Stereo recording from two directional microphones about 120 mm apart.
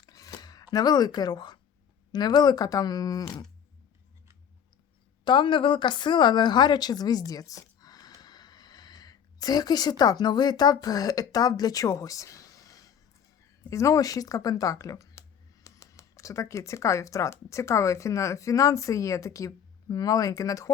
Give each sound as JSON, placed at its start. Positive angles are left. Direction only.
{"t": 0.0, "sound": "a sound", "side_deg": 30}
{"t": 2.1, "sound": "speech", "side_deg": 35}
{"t": 5.2, "sound": "a woman's voice", "side_deg": 40}